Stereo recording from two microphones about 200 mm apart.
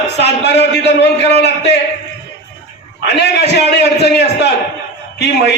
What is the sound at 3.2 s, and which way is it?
A man's voice, 55° left (ahead or behind).